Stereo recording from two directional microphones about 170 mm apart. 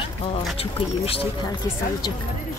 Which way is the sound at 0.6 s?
35° left (ahead or behind).